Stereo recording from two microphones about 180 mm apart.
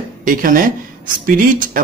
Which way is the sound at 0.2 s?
50° right (ahead or behind).